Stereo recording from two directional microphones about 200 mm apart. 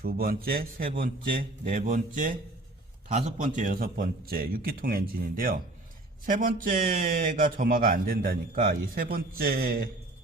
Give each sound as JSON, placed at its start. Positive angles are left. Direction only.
{"t": 0.0, "sound": "speech", "side_deg": -45}